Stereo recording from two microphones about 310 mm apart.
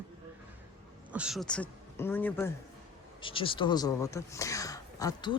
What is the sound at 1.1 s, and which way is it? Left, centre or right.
A woman's voice, centre.